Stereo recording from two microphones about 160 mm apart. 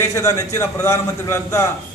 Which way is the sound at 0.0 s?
20° left (ahead or behind).